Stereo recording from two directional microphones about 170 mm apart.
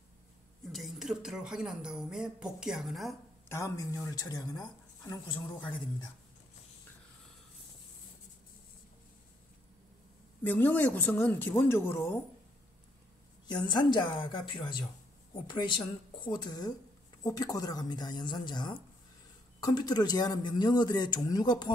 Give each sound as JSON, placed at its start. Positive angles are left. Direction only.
{"t": 0.7, "sound": "speech", "side_deg": 0}
{"t": 3.4, "sound": "speech", "side_deg": 15}
{"t": 10.4, "sound": "speech", "side_deg": 10}
{"t": 13.7, "sound": "speech", "side_deg": 25}